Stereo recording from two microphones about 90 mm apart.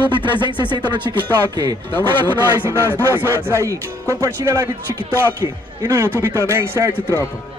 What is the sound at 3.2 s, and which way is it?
Speech, 30° right (ahead or behind).